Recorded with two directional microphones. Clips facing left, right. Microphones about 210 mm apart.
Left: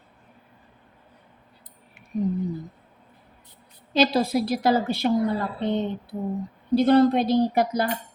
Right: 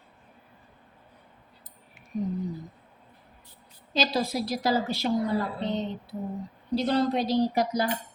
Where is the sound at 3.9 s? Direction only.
55° left (ahead or behind).